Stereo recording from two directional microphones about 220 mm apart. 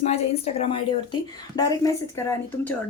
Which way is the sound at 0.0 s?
30° left (ahead or behind).